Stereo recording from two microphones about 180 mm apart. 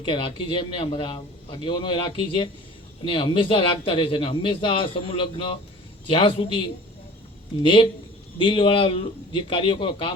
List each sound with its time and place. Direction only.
0.0 s a man's voice: 25° left (ahead or behind)
7.6 s a man's voice: 30° left (ahead or behind)